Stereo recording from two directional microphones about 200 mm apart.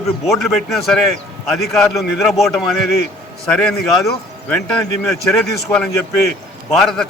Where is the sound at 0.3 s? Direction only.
Centre (ahead or behind).